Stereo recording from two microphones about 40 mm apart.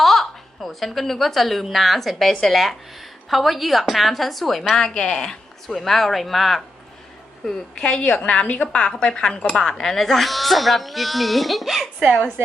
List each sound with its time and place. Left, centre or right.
0.0 s a sound: centre
1.7 s speech: centre
4.9 s speech: centre
5.6 s a woman's voice: centre
7.8 s speech: left
8.4 s a woman's voice: left
8.7 s speech: left
9.7 s speech: centre